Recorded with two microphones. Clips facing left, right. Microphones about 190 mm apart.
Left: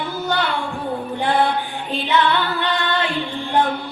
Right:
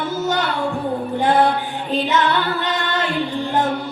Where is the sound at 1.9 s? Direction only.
40° right (ahead or behind).